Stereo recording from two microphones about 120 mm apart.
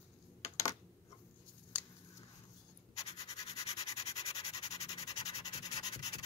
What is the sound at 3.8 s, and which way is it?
Rub, 60° left (ahead or behind).